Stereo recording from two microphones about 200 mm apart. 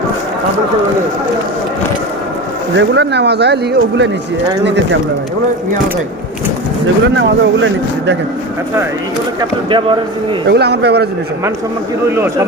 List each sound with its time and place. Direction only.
2.7 s speech: 60° right (ahead or behind)
7.2 s speech: 65° right (ahead or behind)
9.6 s speech: 25° right (ahead or behind)
10.5 s speech: 55° right (ahead or behind)
12.0 s speech: 10° right (ahead or behind)